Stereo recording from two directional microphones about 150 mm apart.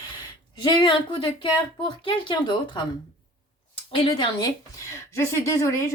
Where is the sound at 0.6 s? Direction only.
30° left (ahead or behind).